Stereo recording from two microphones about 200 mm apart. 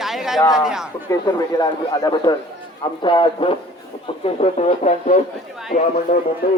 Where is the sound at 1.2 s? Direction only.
20° left (ahead or behind); by 5.1 s 35° left (ahead or behind).